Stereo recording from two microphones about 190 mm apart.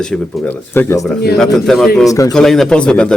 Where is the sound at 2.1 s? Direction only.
20° left (ahead or behind).